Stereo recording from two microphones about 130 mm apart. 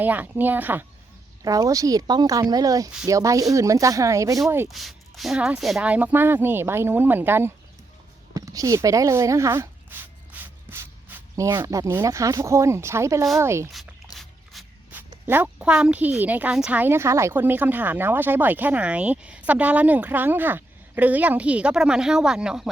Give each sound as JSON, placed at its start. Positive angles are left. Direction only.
{"t": 0.0, "sound": "a woman's voice", "side_deg": -15}
{"t": 1.5, "sound": "speech", "side_deg": -25}
{"t": 4.7, "sound": "a woman's voice", "side_deg": 0}
{"t": 8.3, "sound": "a sound", "side_deg": -25}
{"t": 11.6, "sound": "speech", "side_deg": -25}
{"t": 14.5, "sound": "shuffle", "side_deg": 0}
{"t": 15.3, "sound": "a woman's voice", "side_deg": -10}